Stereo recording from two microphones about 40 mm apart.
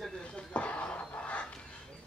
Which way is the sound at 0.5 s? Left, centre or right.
Left.